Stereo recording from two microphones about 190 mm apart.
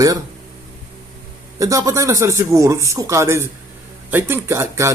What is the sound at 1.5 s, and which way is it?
A man's voice, 20° right (ahead or behind).